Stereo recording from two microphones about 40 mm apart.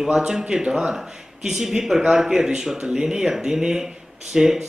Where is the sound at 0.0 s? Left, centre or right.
Centre.